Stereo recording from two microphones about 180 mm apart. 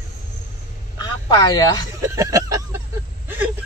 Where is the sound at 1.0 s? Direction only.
20° left (ahead or behind).